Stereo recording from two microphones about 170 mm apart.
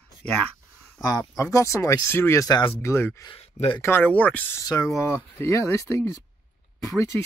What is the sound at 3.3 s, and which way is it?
Speech, 35° left (ahead or behind).